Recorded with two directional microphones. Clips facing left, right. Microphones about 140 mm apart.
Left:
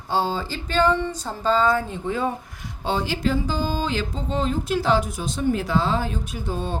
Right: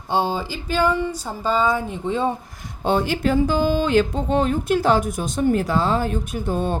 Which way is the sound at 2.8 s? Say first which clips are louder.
Right 4 dB; 50° right (ahead or behind).